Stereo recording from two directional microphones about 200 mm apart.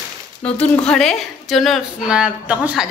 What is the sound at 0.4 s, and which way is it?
Speech, 30° left (ahead or behind).